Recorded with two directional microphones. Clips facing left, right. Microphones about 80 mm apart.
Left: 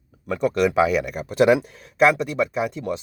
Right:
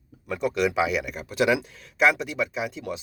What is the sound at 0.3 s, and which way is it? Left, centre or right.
Speech, left.